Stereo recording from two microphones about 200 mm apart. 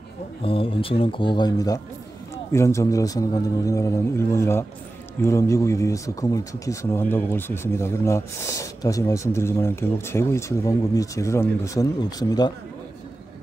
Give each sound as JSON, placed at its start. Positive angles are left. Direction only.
{"t": 0.4, "sound": "speech", "side_deg": 25}